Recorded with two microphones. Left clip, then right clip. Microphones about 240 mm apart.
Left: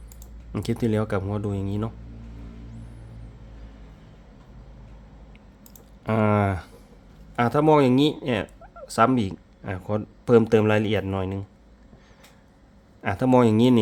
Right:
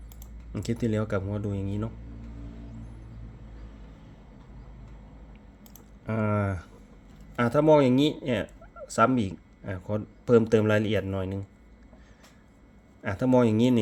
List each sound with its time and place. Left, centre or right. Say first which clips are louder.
0.5 s speech: left 4 dB; centre
6.1 s speech: left 7 dB; left
13.0 s speech: left 4 dB; centre